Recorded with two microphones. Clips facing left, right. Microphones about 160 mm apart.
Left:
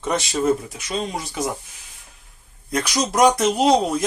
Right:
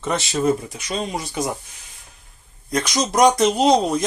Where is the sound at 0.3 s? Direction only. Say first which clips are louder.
Right 1 dB; 5° left (ahead or behind).